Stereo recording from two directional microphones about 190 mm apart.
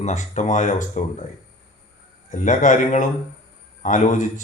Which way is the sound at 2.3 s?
40° left (ahead or behind).